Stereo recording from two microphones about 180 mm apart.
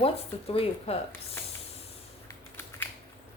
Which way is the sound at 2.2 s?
10° left (ahead or behind).